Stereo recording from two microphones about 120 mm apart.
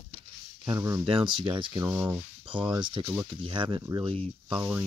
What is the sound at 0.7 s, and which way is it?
Speech, 25° right (ahead or behind).